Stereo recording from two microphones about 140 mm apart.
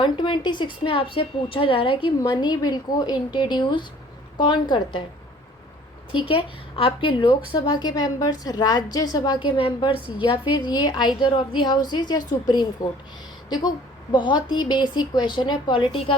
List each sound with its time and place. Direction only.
0.0 s speech: 35° left (ahead or behind)
6.1 s speech: 40° left (ahead or behind)